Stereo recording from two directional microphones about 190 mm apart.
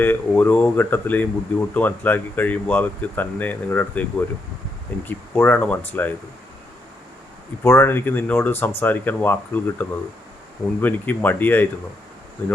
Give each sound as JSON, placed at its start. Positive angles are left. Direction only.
{"t": 0.0, "sound": "speech", "side_deg": 10}
{"t": 7.6, "sound": "speech", "side_deg": 15}